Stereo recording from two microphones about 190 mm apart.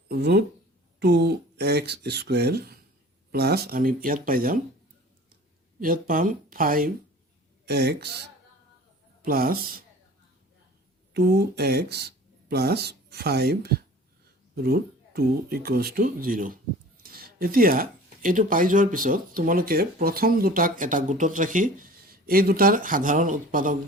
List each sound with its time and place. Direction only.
0.1 s speech: 60° right (ahead or behind)
5.8 s speech: 50° right (ahead or behind)
7.7 s speech: 60° right (ahead or behind)
11.1 s speech: 60° right (ahead or behind)